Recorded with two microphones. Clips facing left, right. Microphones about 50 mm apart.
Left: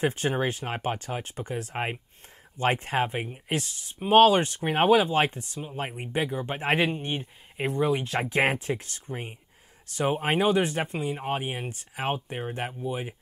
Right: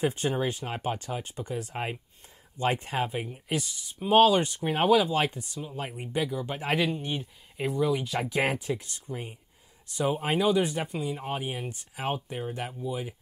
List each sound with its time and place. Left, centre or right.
0.0 s speech: left
9.1 s speech: left